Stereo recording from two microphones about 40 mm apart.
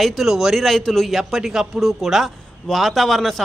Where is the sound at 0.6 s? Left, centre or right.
Centre.